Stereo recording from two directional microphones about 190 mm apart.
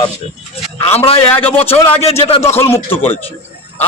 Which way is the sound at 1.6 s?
30° left (ahead or behind).